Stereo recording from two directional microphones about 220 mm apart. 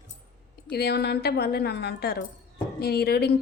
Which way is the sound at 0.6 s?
45° left (ahead or behind).